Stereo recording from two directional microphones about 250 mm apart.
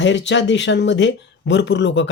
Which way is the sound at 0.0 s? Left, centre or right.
Left.